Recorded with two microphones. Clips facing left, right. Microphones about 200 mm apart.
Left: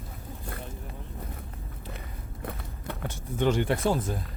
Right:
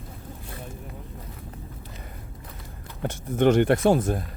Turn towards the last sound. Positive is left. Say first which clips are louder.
# right 7 dB
turn(degrees=-60)  # may be behind; listen again after turning